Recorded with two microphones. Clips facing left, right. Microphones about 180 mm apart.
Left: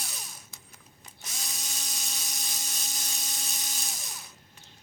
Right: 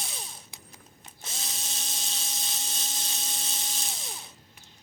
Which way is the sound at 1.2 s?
25° right (ahead or behind).